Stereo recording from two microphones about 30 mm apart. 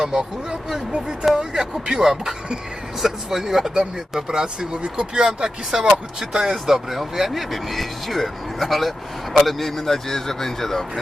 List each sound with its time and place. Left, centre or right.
0.0 s speech: right
4.7 s speech: right; by 7.0 s centre
7.0 s speech: centre